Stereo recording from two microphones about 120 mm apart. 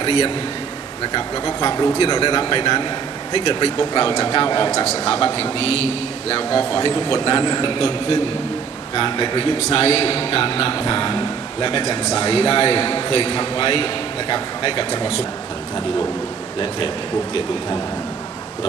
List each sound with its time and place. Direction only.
0.0 s a man's voice: 50° left (ahead or behind)
1.6 s a man's voice: 35° left (ahead or behind)
3.3 s a man's voice: 45° left (ahead or behind)
4.7 s a man's voice: 50° left (ahead or behind)